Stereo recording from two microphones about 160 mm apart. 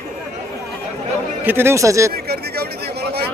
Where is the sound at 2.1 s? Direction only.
80° right.